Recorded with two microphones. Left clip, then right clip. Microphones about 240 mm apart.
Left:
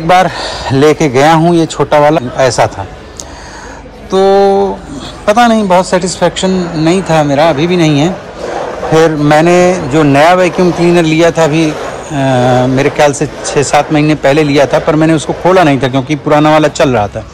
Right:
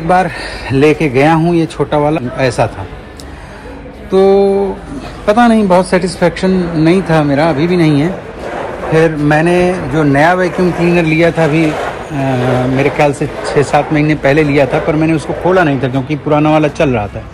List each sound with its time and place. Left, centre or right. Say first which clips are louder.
0.2 s a man's voice: left 5 dB; centre
4.1 s a man's voice: left 2 dB; centre
6.5 s speech: even; centre
6.8 s speech: left 2 dB; centre
8.9 s a man's voice: left 4 dB; centre
13.4 s speech: right 1 dB; left
13.7 s a man's voice: left 3 dB; centre